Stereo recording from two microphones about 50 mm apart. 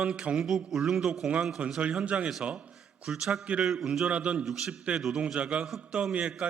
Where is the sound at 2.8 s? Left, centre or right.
Centre.